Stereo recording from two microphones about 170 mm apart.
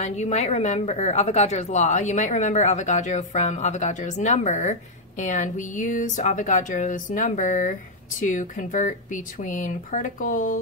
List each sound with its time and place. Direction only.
0.0 s speech: 40° left (ahead or behind)